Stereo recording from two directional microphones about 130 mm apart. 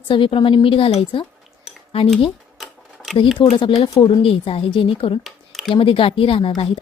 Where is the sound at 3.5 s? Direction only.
40° left (ahead or behind).